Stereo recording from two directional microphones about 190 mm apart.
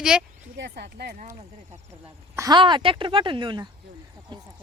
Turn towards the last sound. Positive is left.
turn(degrees=-25)  # may be behind; listen again after turning